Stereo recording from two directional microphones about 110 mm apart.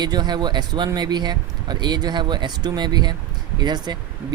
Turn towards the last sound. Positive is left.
turn(degrees=-40)  # may be behind; listen again after turning